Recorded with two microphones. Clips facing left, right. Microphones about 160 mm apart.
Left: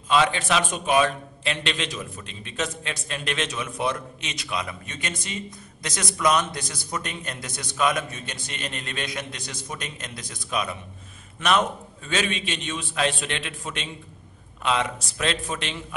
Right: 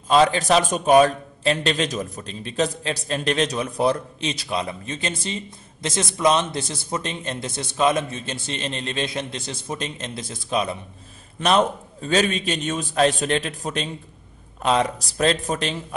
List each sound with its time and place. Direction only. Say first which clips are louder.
0.1 s a man's voice: right 5 dB; 35° right (ahead or behind)